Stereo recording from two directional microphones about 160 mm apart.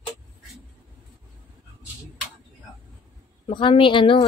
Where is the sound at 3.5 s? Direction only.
30° left (ahead or behind).